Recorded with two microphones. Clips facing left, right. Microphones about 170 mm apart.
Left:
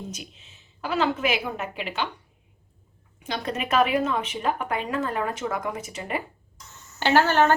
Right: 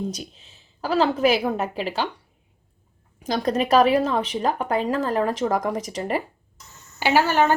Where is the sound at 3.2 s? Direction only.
40° right (ahead or behind).